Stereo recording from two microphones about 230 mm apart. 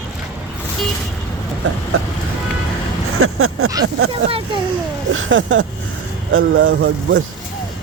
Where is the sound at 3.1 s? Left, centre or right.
Right.